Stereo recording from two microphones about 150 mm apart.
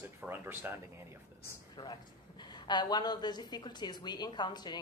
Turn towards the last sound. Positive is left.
turn(degrees=30)  # may be behind; listen again after turning